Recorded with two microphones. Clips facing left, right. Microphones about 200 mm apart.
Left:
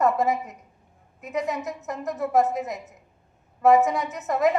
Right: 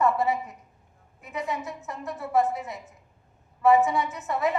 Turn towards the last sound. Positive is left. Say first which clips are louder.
# left 5 dB
turn(degrees=40)  # may be behind; listen again after turning